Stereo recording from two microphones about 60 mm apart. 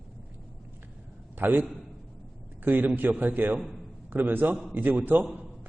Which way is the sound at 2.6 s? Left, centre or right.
Right.